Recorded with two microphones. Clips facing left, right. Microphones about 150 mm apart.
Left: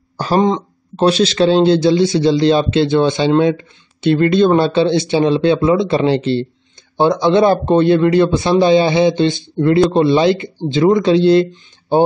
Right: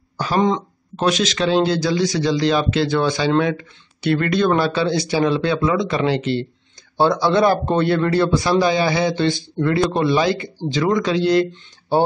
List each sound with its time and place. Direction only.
0.2 s speech: 35° left (ahead or behind)